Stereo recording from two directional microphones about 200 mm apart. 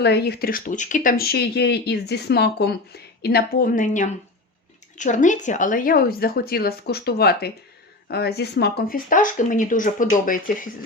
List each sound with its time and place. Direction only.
0.0 s speech: 55° left (ahead or behind)